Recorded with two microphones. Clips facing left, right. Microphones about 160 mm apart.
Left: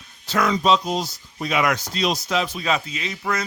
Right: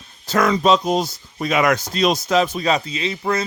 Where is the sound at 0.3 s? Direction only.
45° right (ahead or behind).